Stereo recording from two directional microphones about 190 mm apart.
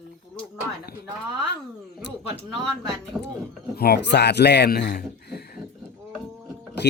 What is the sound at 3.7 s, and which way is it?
Speech, 55° left (ahead or behind).